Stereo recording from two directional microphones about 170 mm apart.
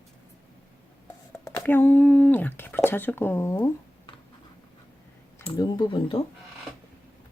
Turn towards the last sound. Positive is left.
turn(degrees=30)  # may be behind; listen again after turning